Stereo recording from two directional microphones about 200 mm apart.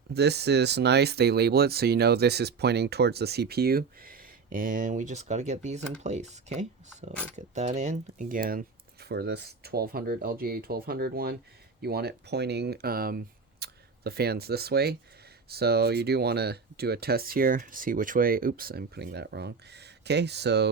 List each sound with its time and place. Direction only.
0.1 s speech: 55° right (ahead or behind)